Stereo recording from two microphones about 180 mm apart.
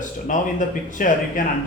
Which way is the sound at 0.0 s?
45° left (ahead or behind).